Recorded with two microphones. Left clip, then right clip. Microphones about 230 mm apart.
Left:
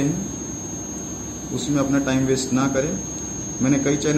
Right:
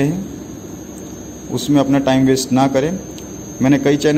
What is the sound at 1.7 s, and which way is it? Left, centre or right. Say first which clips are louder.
Mantra: right 7 dB; right.